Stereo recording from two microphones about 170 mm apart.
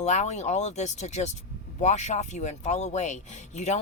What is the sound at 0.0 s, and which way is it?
Speech, 40° left (ahead or behind).